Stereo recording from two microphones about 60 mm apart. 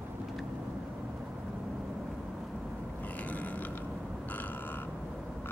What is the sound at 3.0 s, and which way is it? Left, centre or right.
Mechanisms, left.